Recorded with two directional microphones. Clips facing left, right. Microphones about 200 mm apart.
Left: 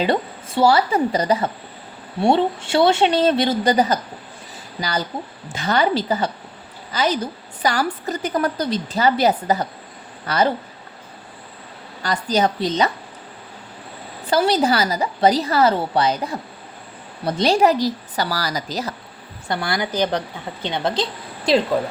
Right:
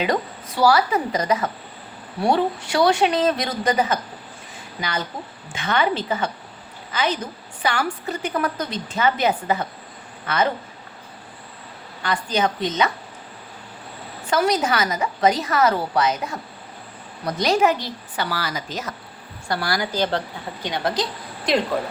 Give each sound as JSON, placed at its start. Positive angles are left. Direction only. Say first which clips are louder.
{"t": 0.0, "sound": "a woman's voice", "louder": "left 2 dB", "side_deg": 30}
{"t": 12.0, "sound": "a woman's voice", "louder": "left 3 dB", "side_deg": 40}
{"t": 14.3, "sound": "a woman's voice", "louder": "left 3 dB", "side_deg": 30}
{"t": 19.5, "sound": "a woman's voice", "louder": "left 1 dB", "side_deg": 20}